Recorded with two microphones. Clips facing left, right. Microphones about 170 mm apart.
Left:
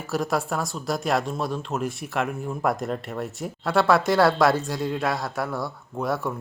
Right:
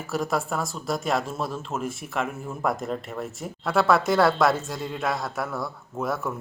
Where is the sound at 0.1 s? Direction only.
Centre (ahead or behind).